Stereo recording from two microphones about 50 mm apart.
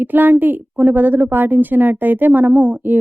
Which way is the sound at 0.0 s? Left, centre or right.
Right.